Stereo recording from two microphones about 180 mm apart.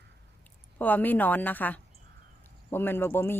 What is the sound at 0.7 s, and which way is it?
Speech, 10° left (ahead or behind).